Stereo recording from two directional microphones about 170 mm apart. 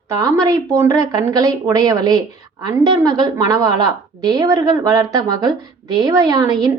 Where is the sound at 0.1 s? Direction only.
20° right (ahead or behind).